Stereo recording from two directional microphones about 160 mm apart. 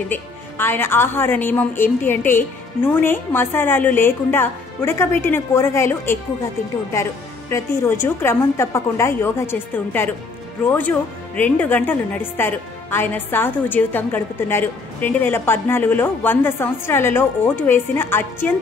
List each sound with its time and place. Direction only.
0.1 s a woman's voice: 15° left (ahead or behind)